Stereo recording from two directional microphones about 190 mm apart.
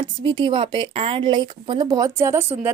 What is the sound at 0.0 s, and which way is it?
A woman's voice, 25° right (ahead or behind).